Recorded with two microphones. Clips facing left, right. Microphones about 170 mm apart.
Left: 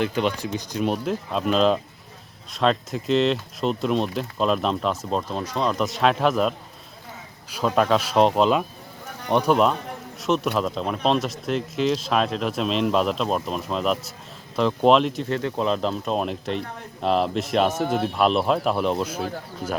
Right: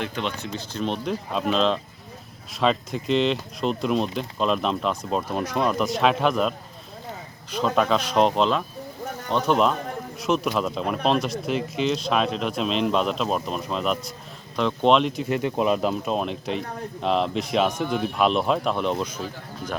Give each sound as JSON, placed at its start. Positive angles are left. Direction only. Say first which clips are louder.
{"t": 0.5, "sound": "speech", "louder": "left 3 dB", "side_deg": 10}
{"t": 5.3, "sound": "speech", "louder": "right 3 dB", "side_deg": -10}
{"t": 5.7, "sound": "speech", "louder": "even", "side_deg": 0}
{"t": 7.5, "sound": "speech", "louder": "left 1 dB", "side_deg": 5}
{"t": 15.3, "sound": "speech", "louder": "right 4 dB", "side_deg": -15}
{"t": 16.1, "sound": "speech", "louder": "left 1 dB", "side_deg": 0}
{"t": 17.8, "sound": "speech", "louder": "left 2 dB", "side_deg": 40}
{"t": 18.1, "sound": "speech", "louder": "even", "side_deg": 0}